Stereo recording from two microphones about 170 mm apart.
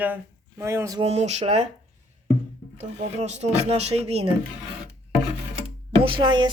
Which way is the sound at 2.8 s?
40° right (ahead or behind).